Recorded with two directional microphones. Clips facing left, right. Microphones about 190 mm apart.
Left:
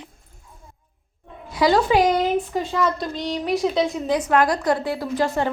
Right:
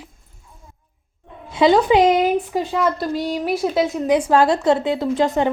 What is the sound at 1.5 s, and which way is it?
A woman's voice, 20° right (ahead or behind).